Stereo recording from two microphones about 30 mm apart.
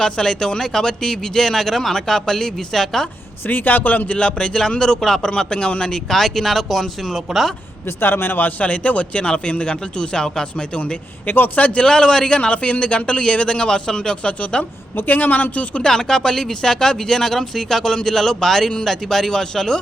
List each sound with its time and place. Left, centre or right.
0.0 s speech: left
3.5 s a man's voice: left
4.1 s speech: left
6.1 s speech: centre
8.6 s a man's voice: left
11.3 s a man's voice: left
11.9 s speech: left
12.4 s speech: left
15.0 s a man's voice: left
15.8 s speech: left